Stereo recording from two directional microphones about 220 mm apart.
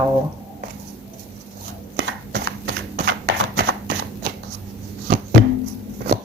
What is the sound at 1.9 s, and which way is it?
Chopping, 55° right (ahead or behind).